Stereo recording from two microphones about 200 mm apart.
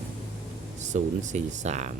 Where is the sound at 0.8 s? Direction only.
35° right (ahead or behind).